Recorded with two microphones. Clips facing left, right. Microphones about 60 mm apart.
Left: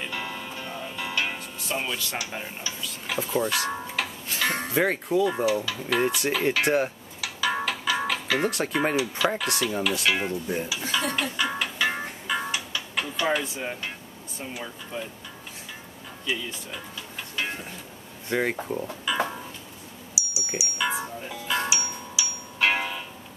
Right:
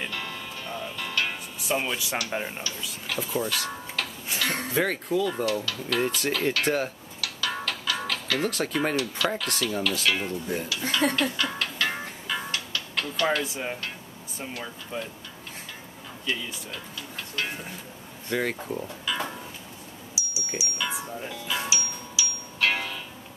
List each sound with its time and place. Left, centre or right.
0.1 s music: centre
1.6 s speech: centre
3.1 s speech: centre
3.4 s speech: left
4.8 s speech: centre
11.1 s music: centre
13.4 s speech: centre
16.3 s speech: centre
18.3 s speech: left
18.7 s speech: centre
20.2 s wind chime: centre
21.3 s music: centre
21.6 s music: centre